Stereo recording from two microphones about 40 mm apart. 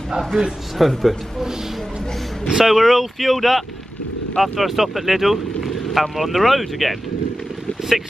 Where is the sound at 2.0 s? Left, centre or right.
Centre.